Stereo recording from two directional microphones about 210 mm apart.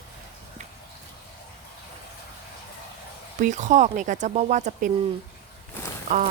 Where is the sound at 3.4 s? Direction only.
35° right (ahead or behind).